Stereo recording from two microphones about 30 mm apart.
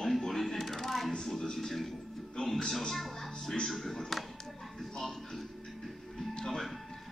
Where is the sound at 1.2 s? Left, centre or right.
Centre.